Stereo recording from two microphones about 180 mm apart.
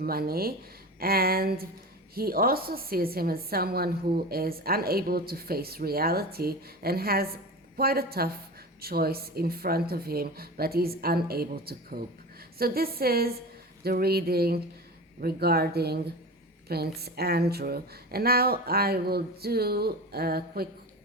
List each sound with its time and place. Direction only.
0.0 s a woman's voice: 55° right (ahead or behind)